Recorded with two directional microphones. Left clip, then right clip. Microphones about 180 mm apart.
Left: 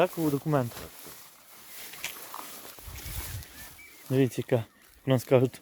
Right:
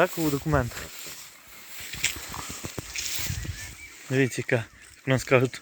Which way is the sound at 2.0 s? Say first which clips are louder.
Right 10 dB; 20° left (ahead or behind).